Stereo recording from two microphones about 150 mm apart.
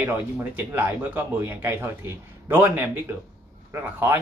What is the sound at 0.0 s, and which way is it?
A man's voice, 15° right (ahead or behind).